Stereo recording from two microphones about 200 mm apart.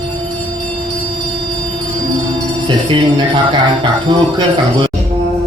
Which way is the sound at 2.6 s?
25° right (ahead or behind).